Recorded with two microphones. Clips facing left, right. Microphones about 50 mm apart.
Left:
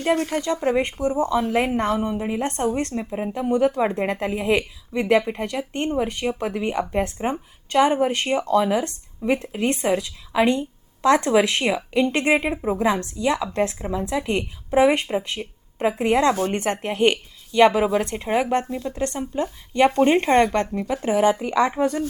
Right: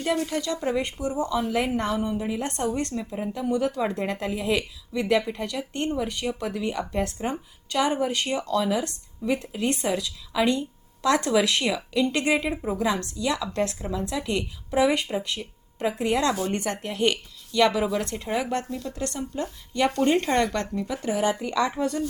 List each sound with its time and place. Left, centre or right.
0.0 s speech: left
0.4 s a woman's voice: left